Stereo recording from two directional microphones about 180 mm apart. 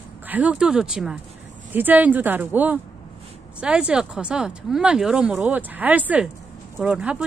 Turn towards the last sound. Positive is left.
turn(degrees=-5)  # may be behind; listen again after turning